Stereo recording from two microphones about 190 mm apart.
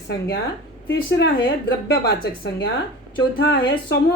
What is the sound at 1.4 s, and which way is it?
A woman's voice, 60° left (ahead or behind).